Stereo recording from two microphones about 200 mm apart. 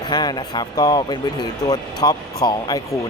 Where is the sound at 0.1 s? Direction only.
20° left (ahead or behind).